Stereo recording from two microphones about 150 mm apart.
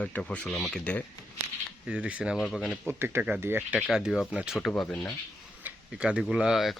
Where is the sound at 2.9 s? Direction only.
15° right (ahead or behind).